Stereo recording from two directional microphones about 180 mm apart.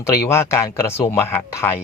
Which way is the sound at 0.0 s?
15° left (ahead or behind).